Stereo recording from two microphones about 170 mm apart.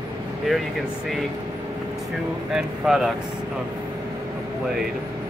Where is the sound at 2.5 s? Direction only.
Centre (ahead or behind).